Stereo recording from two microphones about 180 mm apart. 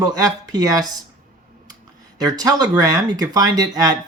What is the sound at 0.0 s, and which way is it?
Speech, 20° right (ahead or behind).